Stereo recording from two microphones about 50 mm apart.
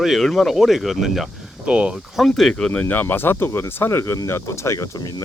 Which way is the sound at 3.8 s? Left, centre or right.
Left.